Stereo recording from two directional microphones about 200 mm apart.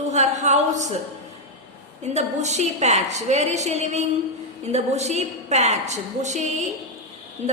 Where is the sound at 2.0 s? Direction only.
35° right (ahead or behind).